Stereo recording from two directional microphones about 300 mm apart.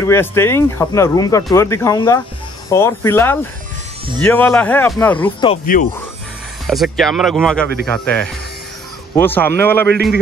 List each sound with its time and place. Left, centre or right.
0.0 s speech: centre
5.5 s speech: left
6.7 s speech: centre